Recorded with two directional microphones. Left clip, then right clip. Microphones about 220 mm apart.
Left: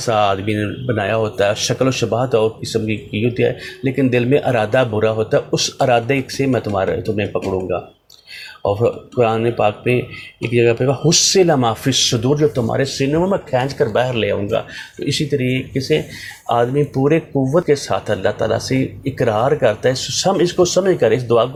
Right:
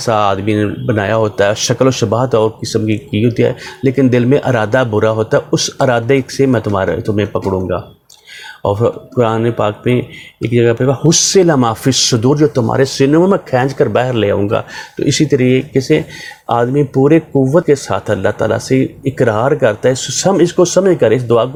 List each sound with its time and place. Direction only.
0.0 s speech: 45° right (ahead or behind)
8.6 s speech: 45° right (ahead or behind)